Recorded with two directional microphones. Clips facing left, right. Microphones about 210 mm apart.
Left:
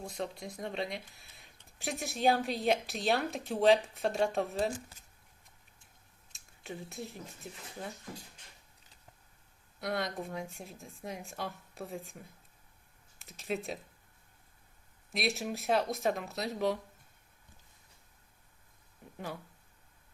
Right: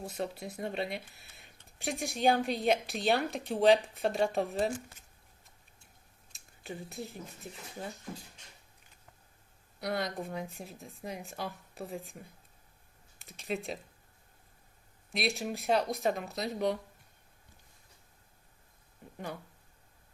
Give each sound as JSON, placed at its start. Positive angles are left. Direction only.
{"t": 0.0, "sound": "speech", "side_deg": -5}
{"t": 6.3, "sound": "speech", "side_deg": 0}
{"t": 9.8, "sound": "speech", "side_deg": 0}
{"t": 13.1, "sound": "speech", "side_deg": 0}
{"t": 15.1, "sound": "speech", "side_deg": 0}